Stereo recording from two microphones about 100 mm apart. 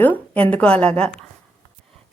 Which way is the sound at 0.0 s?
15° left (ahead or behind).